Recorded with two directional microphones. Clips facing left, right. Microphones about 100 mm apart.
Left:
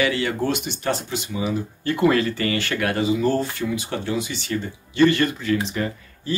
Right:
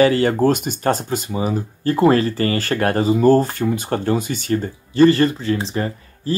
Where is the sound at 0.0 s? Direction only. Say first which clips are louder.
Right 8 dB; 40° right (ahead or behind).